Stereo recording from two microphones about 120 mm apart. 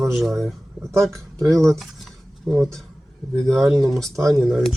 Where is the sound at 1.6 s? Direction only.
Centre (ahead or behind).